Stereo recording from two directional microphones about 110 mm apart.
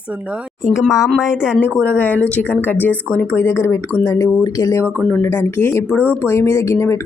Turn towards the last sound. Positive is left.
turn(degrees=25)  # may be behind; listen again after turning